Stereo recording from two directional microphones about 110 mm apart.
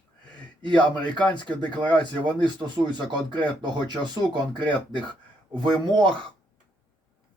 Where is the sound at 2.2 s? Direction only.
45° right (ahead or behind).